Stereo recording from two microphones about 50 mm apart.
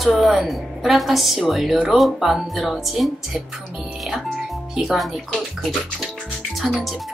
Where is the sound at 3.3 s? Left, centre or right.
Centre.